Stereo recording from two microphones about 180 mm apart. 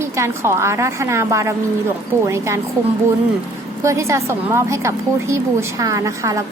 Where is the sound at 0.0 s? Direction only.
15° right (ahead or behind).